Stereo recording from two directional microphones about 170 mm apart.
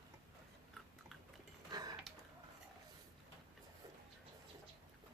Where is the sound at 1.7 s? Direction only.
25° right (ahead or behind).